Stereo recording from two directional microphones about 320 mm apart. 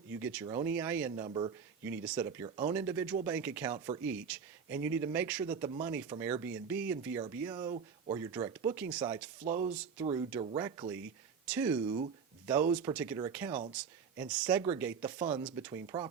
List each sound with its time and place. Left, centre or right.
0.1 s speech: centre
9.4 s speech: right
9.7 s speech: centre